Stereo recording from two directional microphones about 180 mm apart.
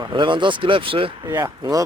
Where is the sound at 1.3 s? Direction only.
15° right (ahead or behind).